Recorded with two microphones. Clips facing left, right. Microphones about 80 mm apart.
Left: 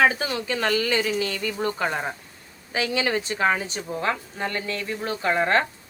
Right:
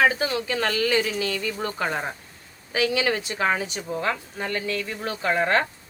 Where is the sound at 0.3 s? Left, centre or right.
Left.